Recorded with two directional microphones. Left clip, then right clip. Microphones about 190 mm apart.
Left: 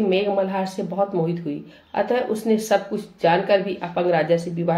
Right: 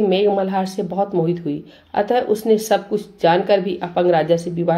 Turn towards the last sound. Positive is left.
turn(degrees=-45)  # may be behind; listen again after turning